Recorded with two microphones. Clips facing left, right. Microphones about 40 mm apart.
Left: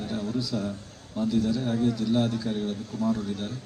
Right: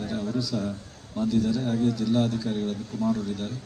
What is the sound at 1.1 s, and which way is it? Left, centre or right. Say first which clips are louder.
A man's voice: right 1 dB; centre.